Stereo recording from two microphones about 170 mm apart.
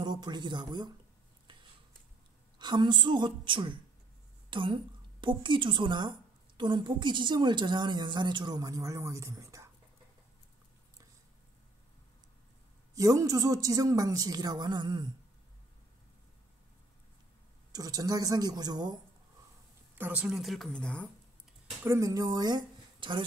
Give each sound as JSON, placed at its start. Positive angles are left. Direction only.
{"t": 0.0, "sound": "speech", "side_deg": -25}
{"t": 1.5, "sound": "stir", "side_deg": -30}
{"t": 2.6, "sound": "a woman's voice", "side_deg": -25}
{"t": 12.9, "sound": "a woman's voice", "side_deg": -20}
{"t": 17.7, "sound": "a woman's voice", "side_deg": -20}
{"t": 20.0, "sound": "a woman's voice", "side_deg": -10}
{"t": 21.8, "sound": "speech", "side_deg": -20}